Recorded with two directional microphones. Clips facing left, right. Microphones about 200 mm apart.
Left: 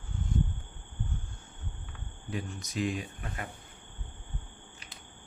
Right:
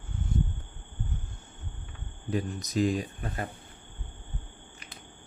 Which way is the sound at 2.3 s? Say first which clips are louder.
Right 7 dB; 40° right (ahead or behind).